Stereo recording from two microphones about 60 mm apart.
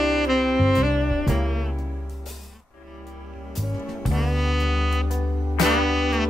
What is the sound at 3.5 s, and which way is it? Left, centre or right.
Saxophone, centre.